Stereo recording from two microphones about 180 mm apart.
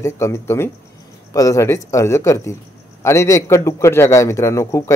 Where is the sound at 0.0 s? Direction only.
15° left (ahead or behind).